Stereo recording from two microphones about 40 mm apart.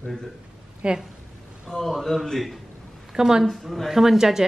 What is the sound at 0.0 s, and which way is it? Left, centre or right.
Speech, centre.